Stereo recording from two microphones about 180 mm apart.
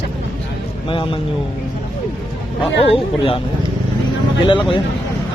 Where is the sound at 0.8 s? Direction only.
30° left (ahead or behind).